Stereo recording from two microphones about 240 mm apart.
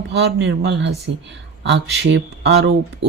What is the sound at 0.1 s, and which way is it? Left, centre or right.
Speech, right.